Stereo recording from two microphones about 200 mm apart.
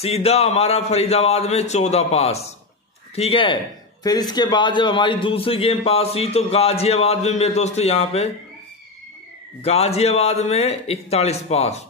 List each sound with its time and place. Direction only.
0.0 s a man's voice: 30° left (ahead or behind)
9.6 s a man's voice: 30° left (ahead or behind)